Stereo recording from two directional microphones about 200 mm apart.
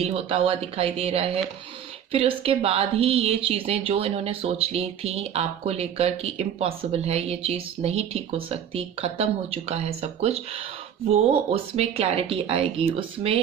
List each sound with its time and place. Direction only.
0.0 s speech: 30° right (ahead or behind)